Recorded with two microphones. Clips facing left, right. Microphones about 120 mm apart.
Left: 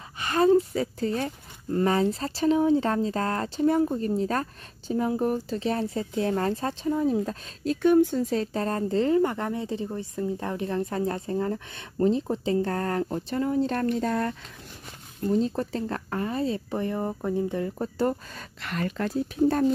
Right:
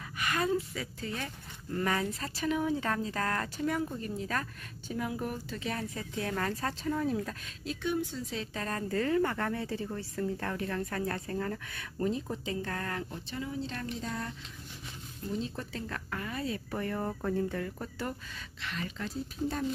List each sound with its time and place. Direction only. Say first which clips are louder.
0.2 s speech: left 10 dB; 30° left (ahead or behind)
7.6 s speech: left 13 dB; 45° left (ahead or behind)
15.3 s speech: left 10 dB; 40° left (ahead or behind); by 19.6 s 60° left (ahead or behind)